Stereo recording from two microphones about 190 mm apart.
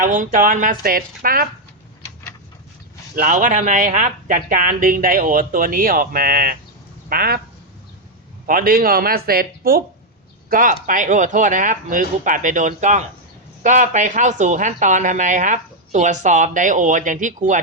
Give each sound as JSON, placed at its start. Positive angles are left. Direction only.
{"t": 0.0, "sound": "speech", "side_deg": -40}
{"t": 3.2, "sound": "speech", "side_deg": -40}
{"t": 8.4, "sound": "speech", "side_deg": -50}